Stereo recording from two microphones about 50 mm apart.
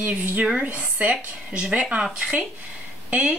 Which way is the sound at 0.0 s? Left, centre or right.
Right.